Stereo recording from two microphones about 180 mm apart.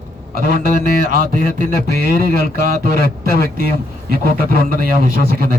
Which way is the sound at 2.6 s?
50° right (ahead or behind).